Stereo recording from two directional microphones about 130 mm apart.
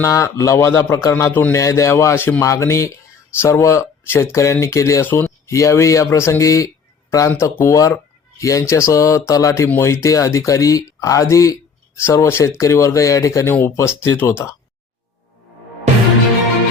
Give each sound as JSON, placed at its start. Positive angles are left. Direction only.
{"t": 0.0, "sound": "a man's voice", "side_deg": 25}
{"t": 1.5, "sound": "speech", "side_deg": 25}